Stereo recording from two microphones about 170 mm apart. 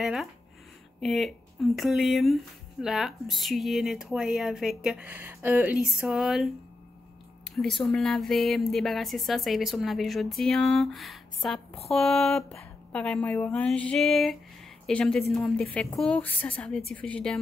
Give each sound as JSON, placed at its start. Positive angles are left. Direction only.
{"t": 0.0, "sound": "speech", "side_deg": 0}
{"t": 7.5, "sound": "a woman's voice", "side_deg": 0}